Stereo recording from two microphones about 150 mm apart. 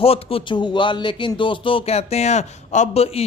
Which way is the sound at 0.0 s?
40° left (ahead or behind).